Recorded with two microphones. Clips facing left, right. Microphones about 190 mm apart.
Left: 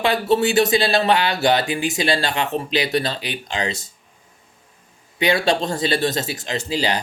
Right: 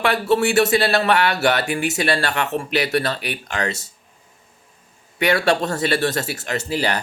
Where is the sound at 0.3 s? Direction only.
15° left (ahead or behind).